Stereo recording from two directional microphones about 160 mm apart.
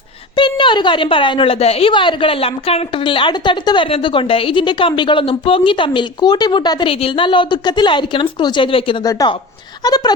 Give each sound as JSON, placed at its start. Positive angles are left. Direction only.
{"t": 0.3, "sound": "a woman's voice", "side_deg": 30}
{"t": 9.0, "sound": "speech", "side_deg": 20}